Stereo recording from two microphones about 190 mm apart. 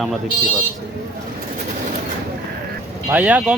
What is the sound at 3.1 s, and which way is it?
Speech, 5° right (ahead or behind).